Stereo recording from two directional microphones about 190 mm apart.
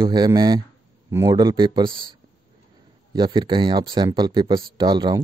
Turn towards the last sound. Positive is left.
turn(degrees=-25)  # may be behind; listen again after turning